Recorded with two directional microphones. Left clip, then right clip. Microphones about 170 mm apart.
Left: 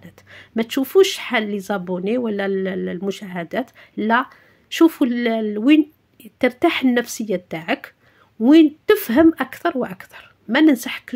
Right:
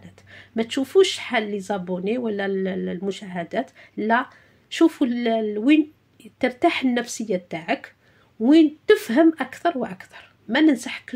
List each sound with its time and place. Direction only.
0.0 s speech: 30° left (ahead or behind)